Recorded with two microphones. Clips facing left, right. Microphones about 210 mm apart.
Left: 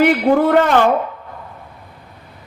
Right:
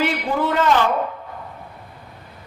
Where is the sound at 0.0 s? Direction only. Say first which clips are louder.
Left 9 dB; 55° left (ahead or behind).